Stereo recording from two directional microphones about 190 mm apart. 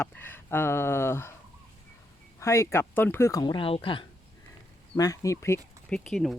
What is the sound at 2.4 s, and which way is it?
Speech, 15° left (ahead or behind).